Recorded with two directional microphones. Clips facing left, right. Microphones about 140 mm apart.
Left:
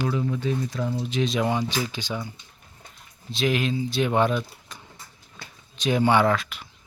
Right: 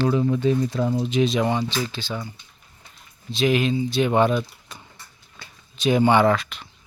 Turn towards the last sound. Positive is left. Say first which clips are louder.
# right 3 dB
turn(degrees=5)  # may be behind; listen again after turning